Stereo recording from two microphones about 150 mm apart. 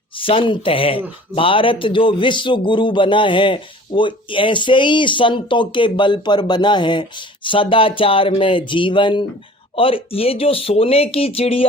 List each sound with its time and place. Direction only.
0.2 s a man's voice: 35° left (ahead or behind)